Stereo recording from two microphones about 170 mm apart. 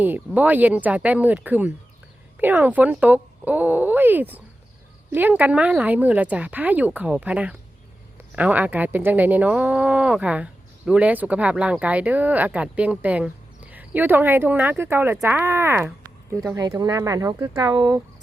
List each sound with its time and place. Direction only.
0.0 s speech: 10° right (ahead or behind)